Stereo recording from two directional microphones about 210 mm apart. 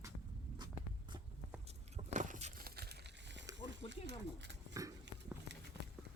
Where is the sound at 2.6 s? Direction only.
50° right (ahead or behind).